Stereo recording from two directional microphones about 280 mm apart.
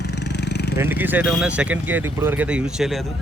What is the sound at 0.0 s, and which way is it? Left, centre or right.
Vehicle, left.